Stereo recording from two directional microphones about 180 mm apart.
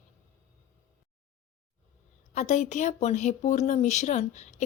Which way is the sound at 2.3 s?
45° left (ahead or behind).